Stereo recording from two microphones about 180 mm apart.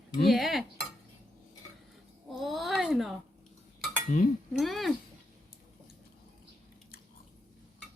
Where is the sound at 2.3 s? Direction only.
Centre (ahead or behind).